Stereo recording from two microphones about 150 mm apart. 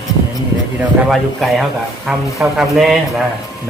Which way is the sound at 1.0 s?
Centre (ahead or behind).